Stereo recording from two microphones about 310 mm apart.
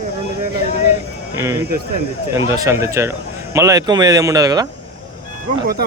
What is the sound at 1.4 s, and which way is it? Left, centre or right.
Speech, centre.